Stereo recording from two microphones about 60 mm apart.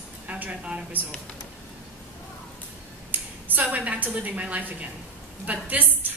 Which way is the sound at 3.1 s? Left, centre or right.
Right.